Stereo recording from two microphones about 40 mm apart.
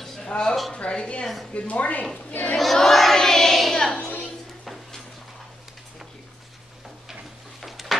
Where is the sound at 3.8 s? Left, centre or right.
Centre.